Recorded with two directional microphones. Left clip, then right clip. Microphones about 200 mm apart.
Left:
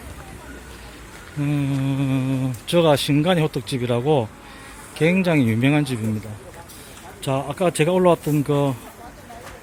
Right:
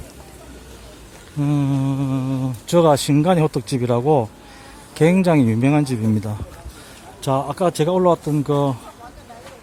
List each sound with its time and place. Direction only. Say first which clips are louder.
1.4 s mantra: right 3 dB; 15° right (ahead or behind)
2.6 s speech: right 2 dB; 15° right (ahead or behind)
7.2 s speech: right 3 dB; 15° right (ahead or behind)